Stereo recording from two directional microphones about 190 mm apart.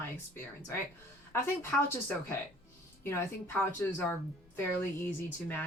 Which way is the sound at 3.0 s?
10° left (ahead or behind).